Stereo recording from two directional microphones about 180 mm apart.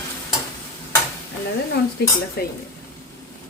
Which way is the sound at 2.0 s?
65° left (ahead or behind).